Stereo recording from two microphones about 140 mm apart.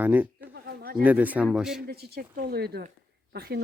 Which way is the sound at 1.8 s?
90° right.